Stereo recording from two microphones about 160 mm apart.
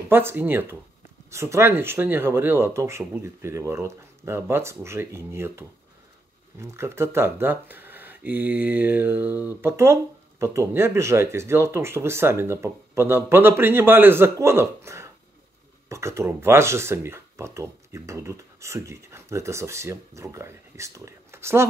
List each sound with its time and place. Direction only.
0.1 s speech: 15° right (ahead or behind)